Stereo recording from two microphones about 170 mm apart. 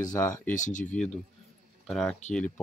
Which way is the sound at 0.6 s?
45° left (ahead or behind).